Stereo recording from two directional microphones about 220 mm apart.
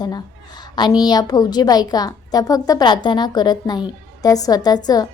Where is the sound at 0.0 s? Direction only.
20° left (ahead or behind).